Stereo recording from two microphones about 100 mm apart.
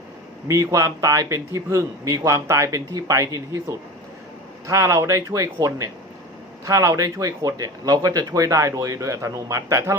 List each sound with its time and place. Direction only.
0.4 s a man's voice: 30° right (ahead or behind)